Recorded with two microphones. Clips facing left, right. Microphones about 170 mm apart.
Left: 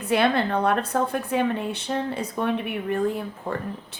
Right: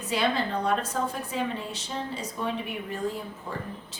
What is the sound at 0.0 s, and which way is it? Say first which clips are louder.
A woman's voice: left 6 dB; 60° left (ahead or behind).